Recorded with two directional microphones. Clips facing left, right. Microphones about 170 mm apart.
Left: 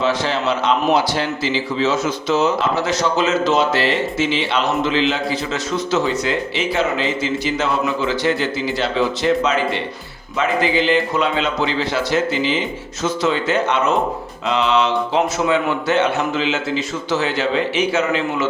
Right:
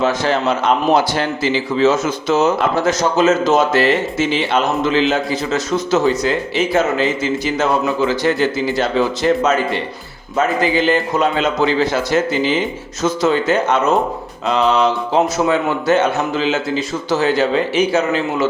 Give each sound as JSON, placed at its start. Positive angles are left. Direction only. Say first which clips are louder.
{"t": 0.0, "sound": "speech", "louder": "right 3 dB", "side_deg": -45}